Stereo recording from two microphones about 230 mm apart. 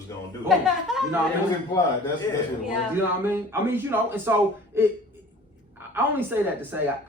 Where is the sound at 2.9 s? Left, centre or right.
Centre.